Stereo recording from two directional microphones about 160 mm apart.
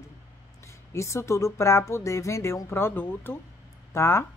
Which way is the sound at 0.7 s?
20° left (ahead or behind).